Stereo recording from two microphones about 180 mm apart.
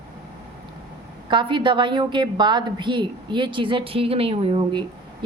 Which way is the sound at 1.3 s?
25° right (ahead or behind).